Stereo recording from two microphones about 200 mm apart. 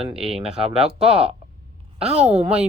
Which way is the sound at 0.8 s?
5° right (ahead or behind).